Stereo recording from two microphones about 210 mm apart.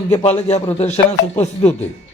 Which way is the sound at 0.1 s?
30° left (ahead or behind).